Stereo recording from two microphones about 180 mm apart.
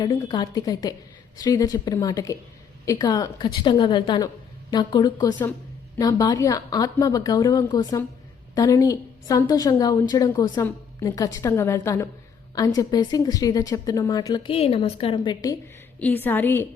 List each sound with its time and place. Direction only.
0.0 s a woman's voice: 20° left (ahead or behind)
16.0 s a woman's voice: 10° left (ahead or behind)